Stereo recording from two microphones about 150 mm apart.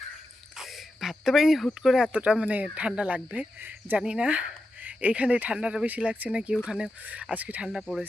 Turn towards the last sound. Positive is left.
turn(degrees=-5)  # may be behind; listen again after turning